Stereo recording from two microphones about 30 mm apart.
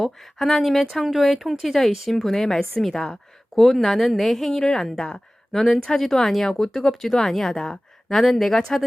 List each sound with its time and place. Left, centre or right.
0.3 s a woman's voice: centre
3.5 s a woman's voice: centre; by 7.8 s left
8.1 s speech: centre